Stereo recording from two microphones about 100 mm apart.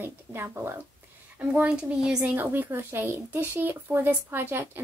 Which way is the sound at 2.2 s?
20° right (ahead or behind).